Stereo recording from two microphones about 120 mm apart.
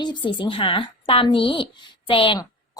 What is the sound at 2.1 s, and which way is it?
Speech, 45° left (ahead or behind).